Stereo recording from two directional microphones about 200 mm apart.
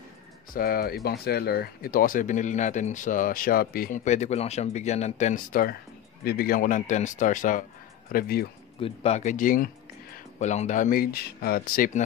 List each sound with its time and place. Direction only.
0.6 s speech: 50° left (ahead or behind)
8.8 s speech: 30° left (ahead or behind)